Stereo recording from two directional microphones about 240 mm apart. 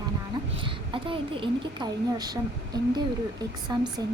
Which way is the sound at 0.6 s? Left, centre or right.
Right.